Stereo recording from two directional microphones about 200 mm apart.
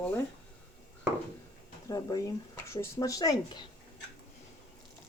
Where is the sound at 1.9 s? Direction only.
20° left (ahead or behind).